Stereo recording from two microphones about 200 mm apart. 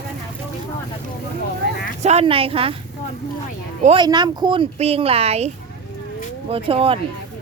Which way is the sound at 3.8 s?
30° right (ahead or behind).